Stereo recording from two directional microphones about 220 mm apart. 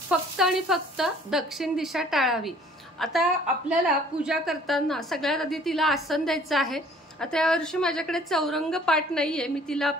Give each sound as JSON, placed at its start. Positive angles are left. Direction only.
{"t": 0.1, "sound": "a woman's voice", "side_deg": 0}